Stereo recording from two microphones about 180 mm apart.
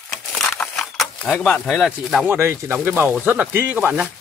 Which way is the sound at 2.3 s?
15° right (ahead or behind).